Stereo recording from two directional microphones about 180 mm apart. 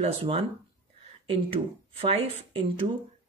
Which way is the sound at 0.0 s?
30° right (ahead or behind).